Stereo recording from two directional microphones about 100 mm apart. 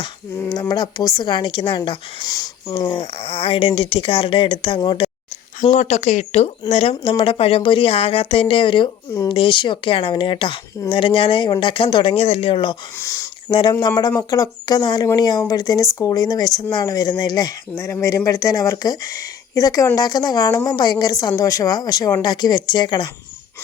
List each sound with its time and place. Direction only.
0.4 s a woman's voice: 40° left (ahead or behind); by 2.2 s 55° left (ahead or behind)
2.2 s speech: 40° left (ahead or behind)
2.9 s speech: 75° left (ahead or behind); by 5.1 s 50° left (ahead or behind)
5.9 s speech: 90° left; by 12.7 s 65° left (ahead or behind)
13.0 s speech: 30° left (ahead or behind)
13.5 s a woman's voice: 55° left (ahead or behind); by 14.8 s 35° left (ahead or behind)
14.8 s a woman's voice: 50° left (ahead or behind)